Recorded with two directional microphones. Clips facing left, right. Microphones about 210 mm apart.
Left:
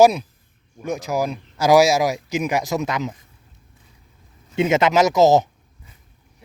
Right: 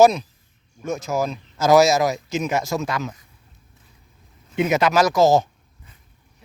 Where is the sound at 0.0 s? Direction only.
10° left (ahead or behind).